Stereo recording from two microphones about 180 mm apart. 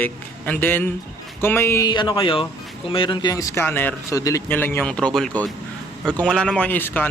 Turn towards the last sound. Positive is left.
turn(degrees=10)  # may be behind; listen again after turning